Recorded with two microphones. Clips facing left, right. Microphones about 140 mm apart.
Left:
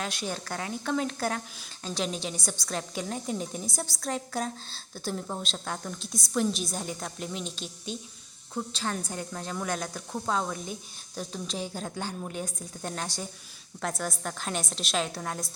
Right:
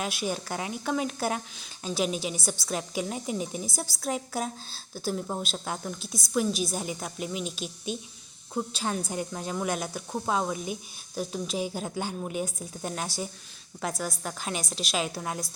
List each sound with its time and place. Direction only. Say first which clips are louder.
0.0 s a woman's voice: right 3 dB; 10° right (ahead or behind)